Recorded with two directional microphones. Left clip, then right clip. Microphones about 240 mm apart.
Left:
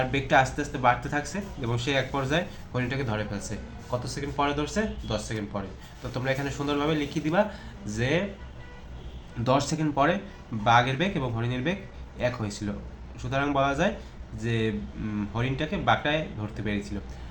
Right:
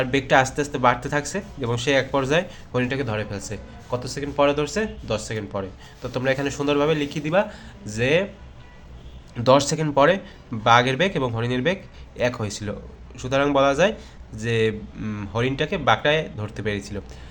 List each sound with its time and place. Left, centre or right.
0.0 s speech: right
9.4 s speech: right